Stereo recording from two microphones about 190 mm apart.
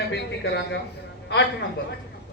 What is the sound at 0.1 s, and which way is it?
Speech, 65° left (ahead or behind).